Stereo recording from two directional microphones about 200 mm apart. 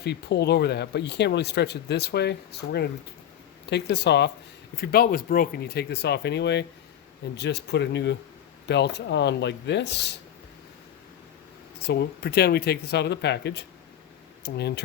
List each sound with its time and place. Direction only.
0.0 s speech: 55° left (ahead or behind)
11.9 s speech: 55° left (ahead or behind)